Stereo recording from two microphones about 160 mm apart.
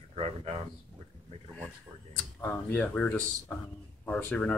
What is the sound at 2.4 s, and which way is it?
Speech, 15° left (ahead or behind).